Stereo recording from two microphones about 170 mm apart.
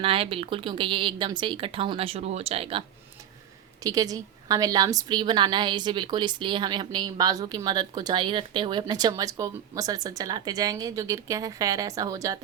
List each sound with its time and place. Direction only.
0.0 s speech: 30° right (ahead or behind)
3.8 s a woman's voice: 20° right (ahead or behind)